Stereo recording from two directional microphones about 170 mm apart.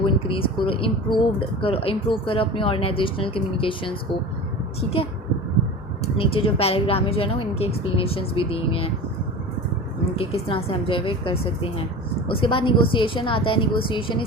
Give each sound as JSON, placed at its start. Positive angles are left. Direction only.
{"t": 0.0, "sound": "speech", "side_deg": 30}
{"t": 6.1, "sound": "speech", "side_deg": 35}
{"t": 10.2, "sound": "speech", "side_deg": 35}